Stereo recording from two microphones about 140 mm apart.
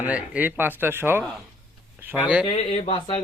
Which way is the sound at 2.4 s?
40° left (ahead or behind).